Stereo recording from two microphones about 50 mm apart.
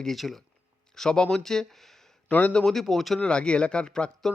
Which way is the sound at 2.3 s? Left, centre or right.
Left.